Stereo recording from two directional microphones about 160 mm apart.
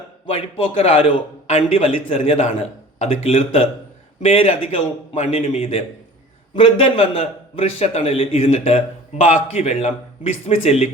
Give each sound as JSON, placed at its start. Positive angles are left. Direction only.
{"t": 0.3, "sound": "a man's voice", "side_deg": 35}